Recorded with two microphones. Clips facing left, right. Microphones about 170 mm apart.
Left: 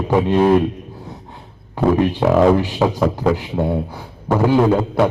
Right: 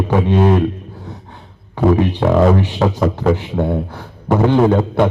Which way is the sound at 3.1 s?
10° left (ahead or behind).